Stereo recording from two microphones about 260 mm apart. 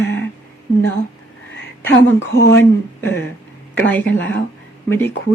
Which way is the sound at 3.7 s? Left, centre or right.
Centre.